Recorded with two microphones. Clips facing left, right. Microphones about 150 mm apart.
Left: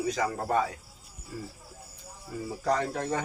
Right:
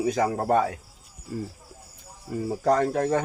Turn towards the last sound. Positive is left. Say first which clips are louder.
# right 6 dB
turn(degrees=-50)  # may be behind; listen again after turning